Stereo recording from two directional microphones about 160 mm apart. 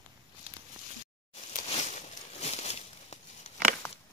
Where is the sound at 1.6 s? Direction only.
45° left (ahead or behind).